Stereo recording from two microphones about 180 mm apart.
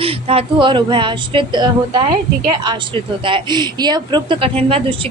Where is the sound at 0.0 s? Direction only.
30° right (ahead or behind).